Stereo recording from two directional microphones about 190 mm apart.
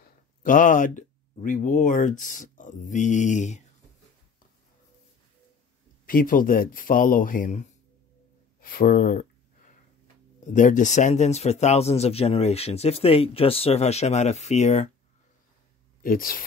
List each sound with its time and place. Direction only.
0.4 s speech: 45° left (ahead or behind)
6.0 s speech: 45° left (ahead or behind)
10.4 s speech: 40° left (ahead or behind)
16.0 s speech: 50° left (ahead or behind)